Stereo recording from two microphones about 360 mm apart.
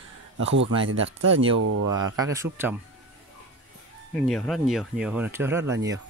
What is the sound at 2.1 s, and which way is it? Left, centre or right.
Speech, centre.